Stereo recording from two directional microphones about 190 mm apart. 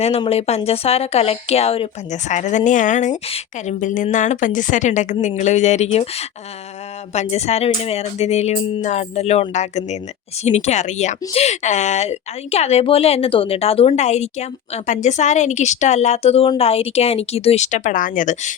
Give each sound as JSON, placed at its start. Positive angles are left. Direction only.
{"t": 0.0, "sound": "speech", "side_deg": 30}